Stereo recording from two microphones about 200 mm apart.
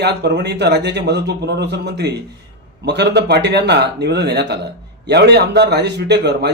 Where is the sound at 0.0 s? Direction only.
60° right (ahead or behind).